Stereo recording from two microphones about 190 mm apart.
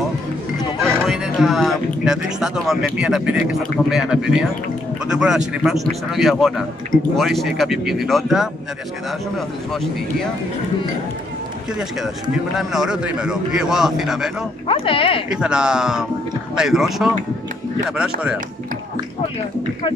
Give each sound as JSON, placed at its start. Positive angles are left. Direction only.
{"t": 1.0, "sound": "speech", "side_deg": 0}
{"t": 12.5, "sound": "speech", "side_deg": -5}
{"t": 14.7, "sound": "speech", "side_deg": 30}
{"t": 15.2, "sound": "speech", "side_deg": -5}